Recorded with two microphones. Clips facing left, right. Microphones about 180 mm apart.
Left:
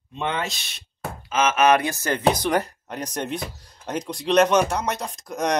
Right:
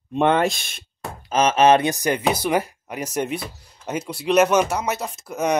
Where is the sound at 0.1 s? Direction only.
55° right (ahead or behind).